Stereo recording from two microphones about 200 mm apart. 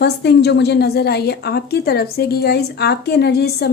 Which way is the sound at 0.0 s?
55° left (ahead or behind).